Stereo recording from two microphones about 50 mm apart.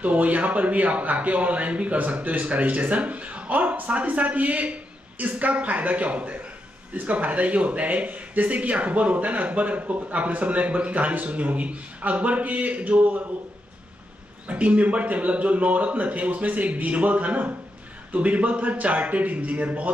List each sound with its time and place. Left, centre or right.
0.0 s speech: right
14.5 s speech: right